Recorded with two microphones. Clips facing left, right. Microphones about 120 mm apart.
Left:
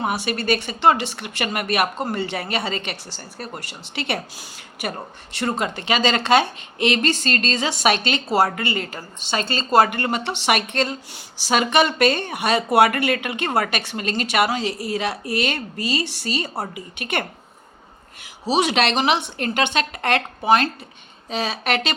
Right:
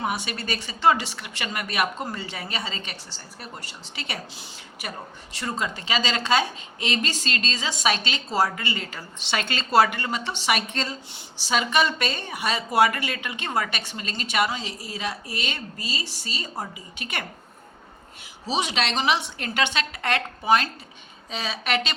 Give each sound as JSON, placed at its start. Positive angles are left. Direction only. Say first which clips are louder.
{"t": 0.0, "sound": "a woman's voice", "louder": "left 5 dB", "side_deg": 55}
{"t": 18.6, "sound": "a woman's voice", "louder": "left 5 dB", "side_deg": 65}